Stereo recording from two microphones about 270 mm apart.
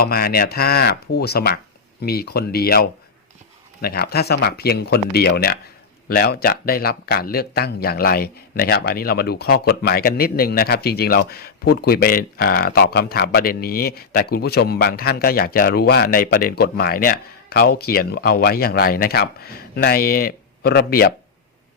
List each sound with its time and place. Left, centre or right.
0.0 s speech: left